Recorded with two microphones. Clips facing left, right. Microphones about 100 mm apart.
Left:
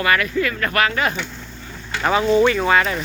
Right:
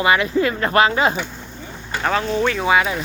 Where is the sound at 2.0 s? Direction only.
5° left (ahead or behind).